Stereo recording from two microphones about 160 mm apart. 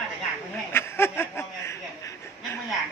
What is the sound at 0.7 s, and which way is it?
Chuckle, 15° left (ahead or behind).